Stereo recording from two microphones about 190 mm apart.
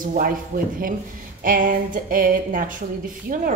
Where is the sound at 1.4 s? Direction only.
45° right (ahead or behind).